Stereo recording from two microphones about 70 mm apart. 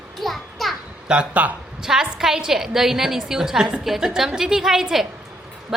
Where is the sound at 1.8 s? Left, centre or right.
Centre.